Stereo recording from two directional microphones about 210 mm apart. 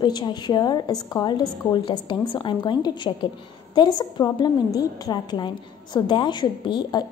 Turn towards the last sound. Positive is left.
turn(degrees=20)  # may be behind; listen again after turning